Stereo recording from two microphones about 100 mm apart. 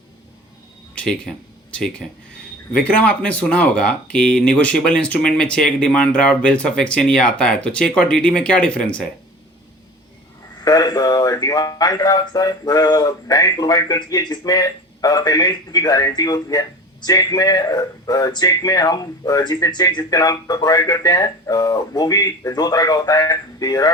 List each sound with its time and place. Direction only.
0.9 s speech: 10° left (ahead or behind)
10.6 s speech: 40° left (ahead or behind)